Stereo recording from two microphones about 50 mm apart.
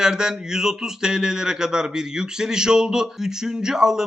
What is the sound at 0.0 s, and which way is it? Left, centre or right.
Speech, centre.